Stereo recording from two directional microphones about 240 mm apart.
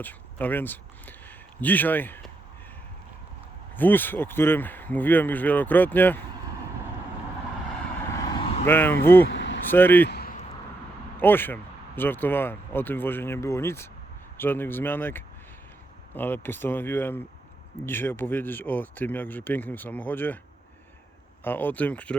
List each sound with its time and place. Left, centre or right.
0.0 s speech: centre
3.8 s speech: centre
8.1 s vehicle: centre
9.3 s vehicle: left
9.7 s speech: centre
10.1 s a sound: left
11.2 s speech: centre
21.4 s speech: centre